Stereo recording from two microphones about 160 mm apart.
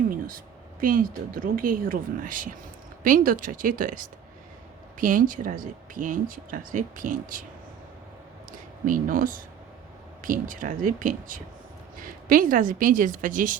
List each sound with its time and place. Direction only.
0.3 s speech: 60° right (ahead or behind)
8.8 s speech: 60° right (ahead or behind)